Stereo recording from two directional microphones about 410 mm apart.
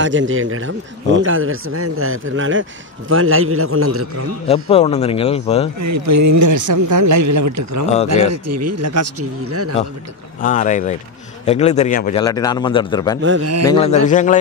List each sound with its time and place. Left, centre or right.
0.0 s speech: right
4.5 s a man's voice: centre
5.8 s a man's voice: right
10.4 s a man's voice: centre
13.2 s speech: right
13.7 s a man's voice: centre